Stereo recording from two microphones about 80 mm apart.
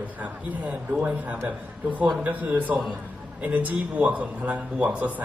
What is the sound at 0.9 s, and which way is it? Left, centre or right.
A man's voice, centre.